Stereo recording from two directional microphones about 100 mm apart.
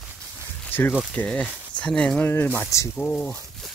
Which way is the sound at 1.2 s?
10° left (ahead or behind).